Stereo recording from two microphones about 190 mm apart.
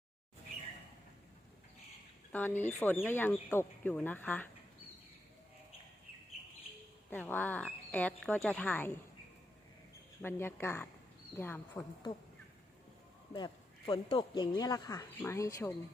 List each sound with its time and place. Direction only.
2.3 s speech: 10° left (ahead or behind)
7.1 s speech: 10° left (ahead or behind)
10.2 s speech: 10° left (ahead or behind)
13.3 s speech: 25° left (ahead or behind)